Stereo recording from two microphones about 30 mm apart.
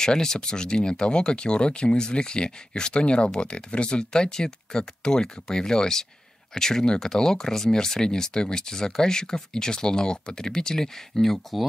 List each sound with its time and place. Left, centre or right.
0.0 s speech: left
4.1 s speech: left